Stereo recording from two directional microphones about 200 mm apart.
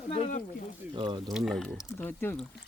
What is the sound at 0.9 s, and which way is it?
Speech, 25° right (ahead or behind).